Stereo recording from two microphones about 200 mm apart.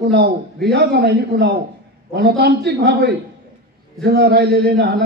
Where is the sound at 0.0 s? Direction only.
50° right (ahead or behind).